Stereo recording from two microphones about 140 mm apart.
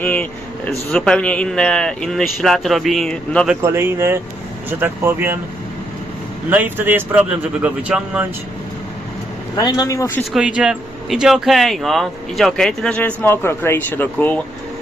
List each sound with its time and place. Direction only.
0.0 s speech: 10° left (ahead or behind)
3.6 s speech: 20° right (ahead or behind)
6.5 s speech: 15° right (ahead or behind)
9.6 s speech: 25° left (ahead or behind)
10.3 s speech: 5° right (ahead or behind); by 14.4 s 15° left (ahead or behind)